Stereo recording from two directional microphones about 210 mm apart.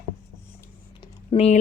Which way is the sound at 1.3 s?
30° left (ahead or behind).